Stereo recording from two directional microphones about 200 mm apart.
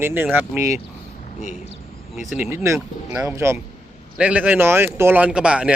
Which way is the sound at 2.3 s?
10° right (ahead or behind).